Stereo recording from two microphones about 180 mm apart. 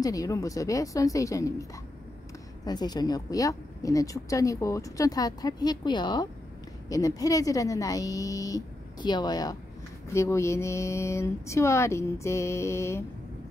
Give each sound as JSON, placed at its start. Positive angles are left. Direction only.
{"t": 0.0, "sound": "a woman's voice", "side_deg": 20}